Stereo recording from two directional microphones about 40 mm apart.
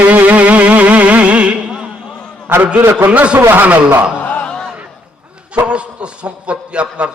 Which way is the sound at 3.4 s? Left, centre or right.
Right.